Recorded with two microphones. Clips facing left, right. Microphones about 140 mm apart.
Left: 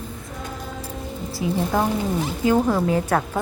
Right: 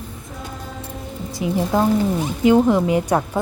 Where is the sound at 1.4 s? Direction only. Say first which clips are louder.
Right 3 dB; 20° right (ahead or behind).